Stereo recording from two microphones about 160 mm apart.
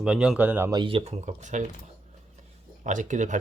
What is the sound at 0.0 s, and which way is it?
Speech, 5° right (ahead or behind).